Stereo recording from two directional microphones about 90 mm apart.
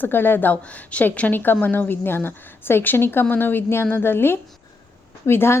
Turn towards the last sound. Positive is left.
turn(degrees=30)  # may be behind; listen again after turning